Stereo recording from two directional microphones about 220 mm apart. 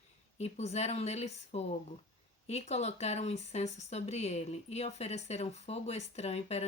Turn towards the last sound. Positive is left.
turn(degrees=30)  # may be behind; listen again after turning